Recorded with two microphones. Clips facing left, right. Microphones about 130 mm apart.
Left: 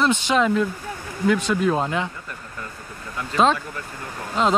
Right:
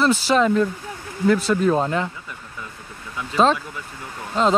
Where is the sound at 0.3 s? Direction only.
Centre (ahead or behind).